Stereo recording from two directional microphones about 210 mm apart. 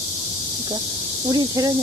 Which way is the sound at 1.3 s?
20° right (ahead or behind).